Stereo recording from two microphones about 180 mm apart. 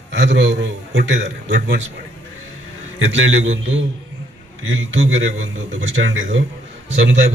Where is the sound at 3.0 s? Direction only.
90° right.